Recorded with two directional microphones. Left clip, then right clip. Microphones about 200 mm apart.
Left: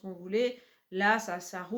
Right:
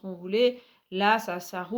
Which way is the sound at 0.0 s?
45° right (ahead or behind).